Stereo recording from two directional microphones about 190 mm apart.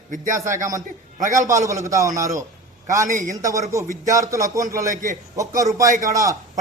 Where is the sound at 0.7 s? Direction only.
15° right (ahead or behind).